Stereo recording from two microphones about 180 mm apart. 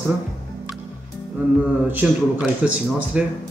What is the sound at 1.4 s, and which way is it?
Speech, 10° right (ahead or behind).